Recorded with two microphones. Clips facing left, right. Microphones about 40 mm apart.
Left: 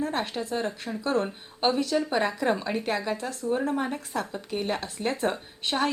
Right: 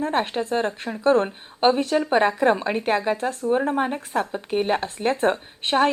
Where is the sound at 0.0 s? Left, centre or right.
Right.